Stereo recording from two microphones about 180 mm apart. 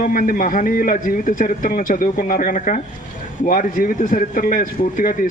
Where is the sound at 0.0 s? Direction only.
50° left (ahead or behind).